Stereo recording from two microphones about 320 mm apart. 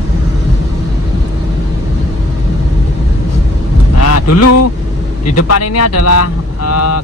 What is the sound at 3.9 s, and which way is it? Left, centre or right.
Vehicle, left.